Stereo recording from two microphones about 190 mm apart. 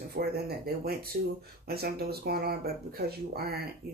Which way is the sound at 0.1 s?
55° right (ahead or behind).